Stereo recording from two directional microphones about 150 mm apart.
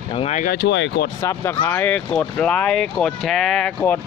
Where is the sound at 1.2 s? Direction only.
15° left (ahead or behind).